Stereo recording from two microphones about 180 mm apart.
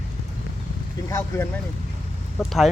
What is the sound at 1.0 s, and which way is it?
Speech, 15° left (ahead or behind).